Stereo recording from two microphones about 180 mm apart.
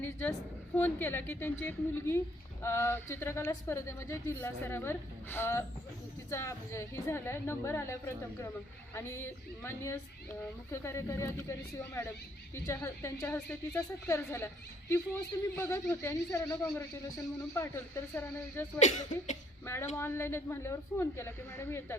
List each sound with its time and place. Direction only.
0.8 s a woman's voice: 10° left (ahead or behind)
18.8 s speech: 40° left (ahead or behind)
19.6 s a woman's voice: 15° left (ahead or behind)